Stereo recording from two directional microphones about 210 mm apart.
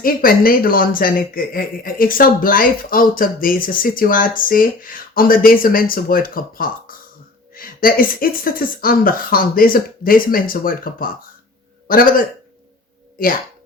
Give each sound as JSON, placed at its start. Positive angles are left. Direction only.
{"t": 0.0, "sound": "speech", "side_deg": 45}